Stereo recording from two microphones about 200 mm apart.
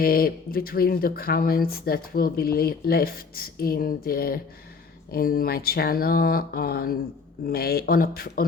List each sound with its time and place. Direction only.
0.0 s speech: 45° left (ahead or behind)